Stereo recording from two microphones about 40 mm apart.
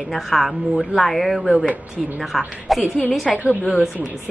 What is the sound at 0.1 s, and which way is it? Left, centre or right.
A woman's voice, centre.